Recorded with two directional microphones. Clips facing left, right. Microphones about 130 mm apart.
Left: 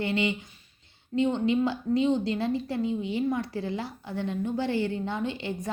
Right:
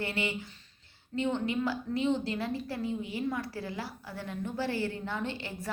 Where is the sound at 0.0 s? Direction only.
20° left (ahead or behind).